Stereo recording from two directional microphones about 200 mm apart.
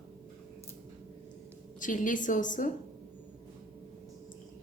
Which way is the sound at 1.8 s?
40° left (ahead or behind).